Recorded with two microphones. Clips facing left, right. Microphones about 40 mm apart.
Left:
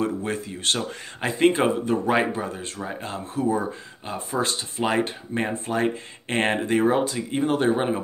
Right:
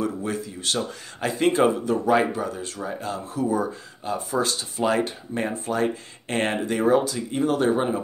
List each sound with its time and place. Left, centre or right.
0.0 s speech: left
1.2 s speech: left